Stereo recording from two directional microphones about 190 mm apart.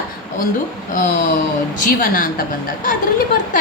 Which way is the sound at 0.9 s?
45° left (ahead or behind).